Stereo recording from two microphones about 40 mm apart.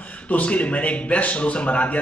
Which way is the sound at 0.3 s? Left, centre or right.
Left.